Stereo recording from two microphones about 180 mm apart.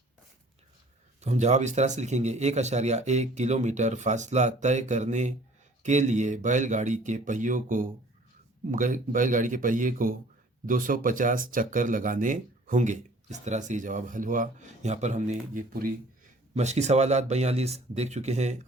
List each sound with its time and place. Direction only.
1.2 s speech: 40° right (ahead or behind)